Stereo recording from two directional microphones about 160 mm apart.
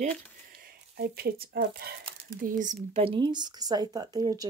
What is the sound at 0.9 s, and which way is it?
Speech, 75° right (ahead or behind).